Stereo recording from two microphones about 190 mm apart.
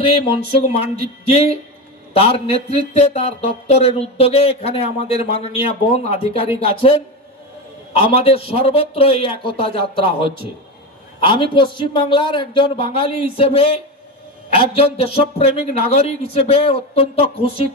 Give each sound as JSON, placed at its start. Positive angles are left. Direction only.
{"t": 0.0, "sound": "a man's voice", "side_deg": 30}